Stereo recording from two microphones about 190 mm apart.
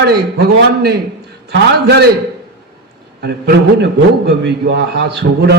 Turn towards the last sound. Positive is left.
turn(degrees=-60)  # may be behind; listen again after turning